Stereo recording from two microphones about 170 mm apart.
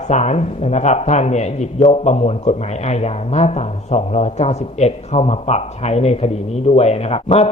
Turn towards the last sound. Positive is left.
turn(degrees=35)  # may be behind; listen again after turning